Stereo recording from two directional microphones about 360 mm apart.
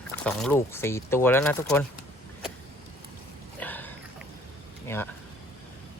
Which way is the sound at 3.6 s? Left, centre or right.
Centre.